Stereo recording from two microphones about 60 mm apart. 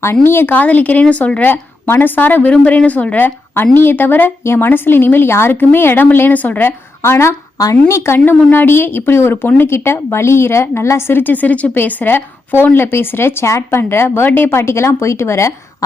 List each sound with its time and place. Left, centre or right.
0.0 s a woman's voice: left
7.0 s speech: left
7.6 s speech: left
8.2 s a woman's voice: left
11.2 s a woman's voice: left